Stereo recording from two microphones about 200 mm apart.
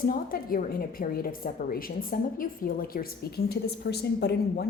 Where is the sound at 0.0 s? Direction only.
45° left (ahead or behind).